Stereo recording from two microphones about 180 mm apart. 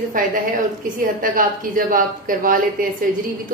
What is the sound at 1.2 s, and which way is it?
A woman's voice, 50° right (ahead or behind).